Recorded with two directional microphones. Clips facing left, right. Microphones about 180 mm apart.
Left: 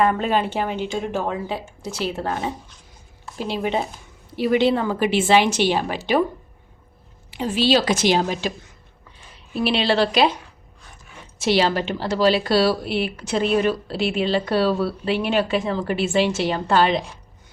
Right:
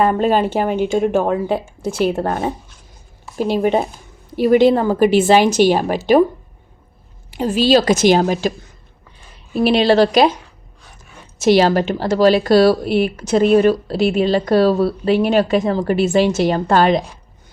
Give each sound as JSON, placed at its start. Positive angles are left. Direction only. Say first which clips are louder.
{"t": 0.0, "sound": "speech", "louder": "right 5 dB", "side_deg": -40}
{"t": 7.3, "sound": "speech", "louder": "right 5 dB", "side_deg": -40}
{"t": 11.3, "sound": "speech", "louder": "right 7 dB", "side_deg": -45}